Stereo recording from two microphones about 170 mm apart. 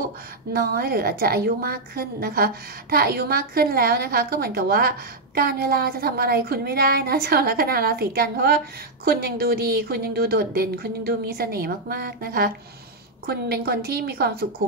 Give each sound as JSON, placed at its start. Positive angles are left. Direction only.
{"t": 0.5, "sound": "a woman's voice", "side_deg": -65}